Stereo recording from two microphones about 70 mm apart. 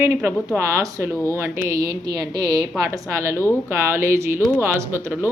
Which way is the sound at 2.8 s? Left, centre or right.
Right.